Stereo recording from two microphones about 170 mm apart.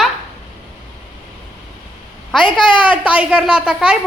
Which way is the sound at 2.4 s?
30° left (ahead or behind).